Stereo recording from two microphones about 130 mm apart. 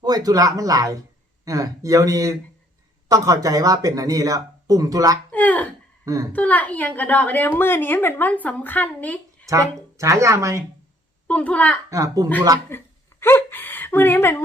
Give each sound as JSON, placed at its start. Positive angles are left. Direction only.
{"t": 0.0, "sound": "speech", "side_deg": -30}
{"t": 5.3, "sound": "a woman's voice", "side_deg": 10}
{"t": 9.5, "sound": "speech", "side_deg": -25}
{"t": 11.3, "sound": "a woman's voice", "side_deg": 10}
{"t": 11.9, "sound": "speech", "side_deg": -25}
{"t": 12.6, "sound": "a sound", "side_deg": 15}